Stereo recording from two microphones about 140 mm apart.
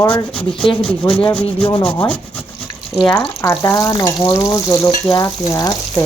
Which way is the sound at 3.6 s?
25° left (ahead or behind).